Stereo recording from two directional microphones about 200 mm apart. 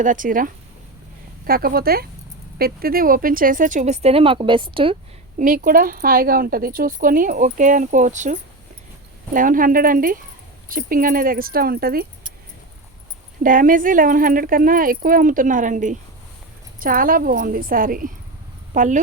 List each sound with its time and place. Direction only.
0.0 s speech: 40° right (ahead or behind)
5.4 s speech: 45° right (ahead or behind)
13.4 s speech: 45° right (ahead or behind)